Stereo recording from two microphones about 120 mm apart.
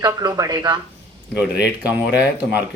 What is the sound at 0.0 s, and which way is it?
Speech, 30° right (ahead or behind).